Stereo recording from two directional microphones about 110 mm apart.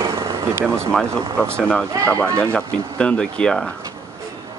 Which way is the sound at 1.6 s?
10° left (ahead or behind).